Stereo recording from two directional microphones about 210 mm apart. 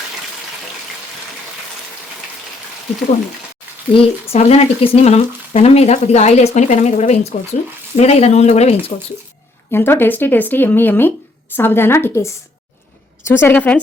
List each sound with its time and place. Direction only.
3.9 s speech: 30° left (ahead or behind)
9.7 s a woman's voice: 10° left (ahead or behind)